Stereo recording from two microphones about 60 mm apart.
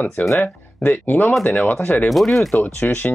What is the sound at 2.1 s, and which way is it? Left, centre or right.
Speech, centre.